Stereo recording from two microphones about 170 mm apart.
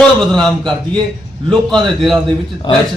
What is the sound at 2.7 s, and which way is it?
Speech, 25° left (ahead or behind).